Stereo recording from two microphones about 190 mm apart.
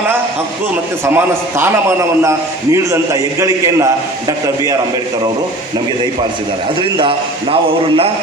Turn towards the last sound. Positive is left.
turn(degrees=-25)  # may be behind; listen again after turning